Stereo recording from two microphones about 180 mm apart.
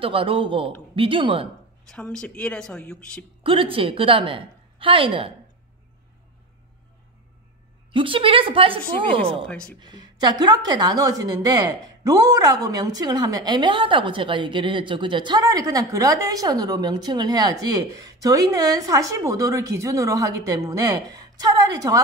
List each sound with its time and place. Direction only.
0.0 s a woman's voice: 30° right (ahead or behind)
1.9 s a woman's voice: 5° left (ahead or behind)
3.4 s a woman's voice: 30° right (ahead or behind)
7.9 s a woman's voice: 30° right (ahead or behind)
9.5 s a woman's voice: 5° left (ahead or behind)
9.8 s a woman's voice: 25° right (ahead or behind)